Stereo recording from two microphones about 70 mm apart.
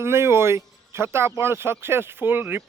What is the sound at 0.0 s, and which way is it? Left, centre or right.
Speech, right.